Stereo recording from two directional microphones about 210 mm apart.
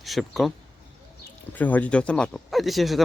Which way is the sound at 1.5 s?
10° left (ahead or behind).